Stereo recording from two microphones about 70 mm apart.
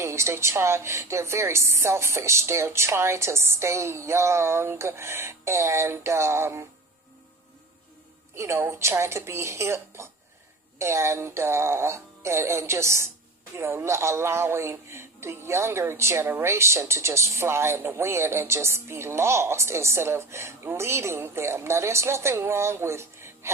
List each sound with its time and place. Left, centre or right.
0.0 s speech: right
8.4 s speech: right